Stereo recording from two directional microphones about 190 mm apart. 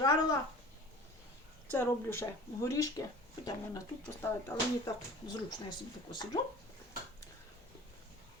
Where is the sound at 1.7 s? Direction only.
15° left (ahead or behind).